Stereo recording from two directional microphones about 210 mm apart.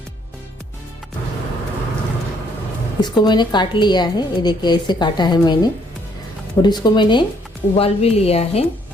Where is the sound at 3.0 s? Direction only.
20° left (ahead or behind).